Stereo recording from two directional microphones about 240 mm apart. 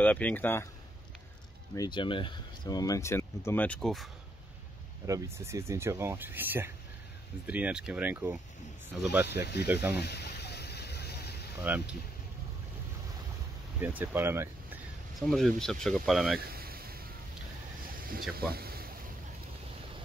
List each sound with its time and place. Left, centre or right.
0.0 s speech: centre
1.8 s speech: centre
5.0 s speech: centre
10.0 s vehicle: left
11.6 s speech: centre
13.7 s speech: centre
15.1 s speech: centre
16.3 s a sound: right
18.3 s speech: right